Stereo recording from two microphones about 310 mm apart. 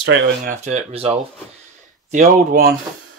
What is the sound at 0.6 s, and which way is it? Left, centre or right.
Speech, right.